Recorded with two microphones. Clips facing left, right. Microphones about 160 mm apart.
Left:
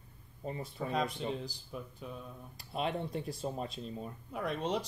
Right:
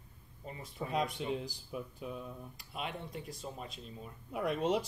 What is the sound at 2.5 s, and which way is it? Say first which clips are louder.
Speech: left 8 dB; 30° left (ahead or behind).